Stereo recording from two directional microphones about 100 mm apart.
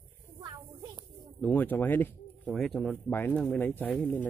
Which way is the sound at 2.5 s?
5° left (ahead or behind).